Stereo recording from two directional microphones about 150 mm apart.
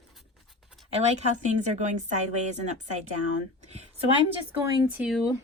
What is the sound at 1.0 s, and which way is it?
Speech, 50° right (ahead or behind).